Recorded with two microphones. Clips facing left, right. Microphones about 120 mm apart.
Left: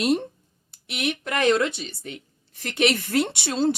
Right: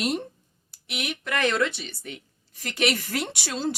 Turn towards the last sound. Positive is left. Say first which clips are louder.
# left 6 dB
turn(degrees=25)  # may be behind; listen again after turning